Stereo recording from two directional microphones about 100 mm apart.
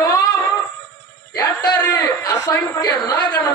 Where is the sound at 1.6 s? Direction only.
40° left (ahead or behind).